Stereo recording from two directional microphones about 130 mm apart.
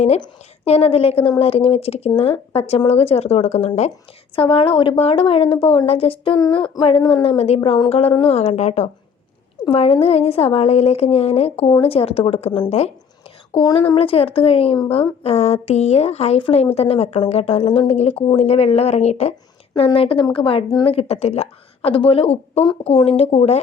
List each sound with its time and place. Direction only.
0.6 s speech: 50° left (ahead or behind)
4.4 s speech: 45° left (ahead or behind)
9.6 s speech: 45° left (ahead or behind)
13.7 s speech: 45° left (ahead or behind)
19.7 s speech: 45° left (ahead or behind)